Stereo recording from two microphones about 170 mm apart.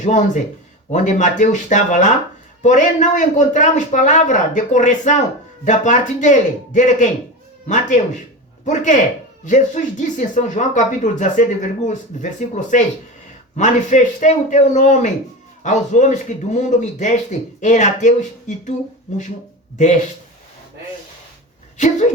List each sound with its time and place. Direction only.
0.0 s speech: 45° left (ahead or behind)
19.7 s speech: 45° left (ahead or behind)
21.8 s speech: 45° left (ahead or behind)